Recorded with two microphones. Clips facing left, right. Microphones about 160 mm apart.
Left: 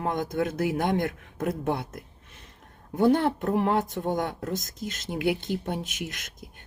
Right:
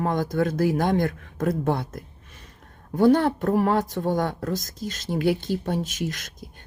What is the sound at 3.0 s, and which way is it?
Speech, 20° left (ahead or behind).